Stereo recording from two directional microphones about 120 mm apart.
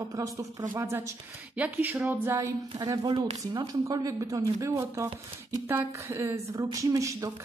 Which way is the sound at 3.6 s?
30° right (ahead or behind).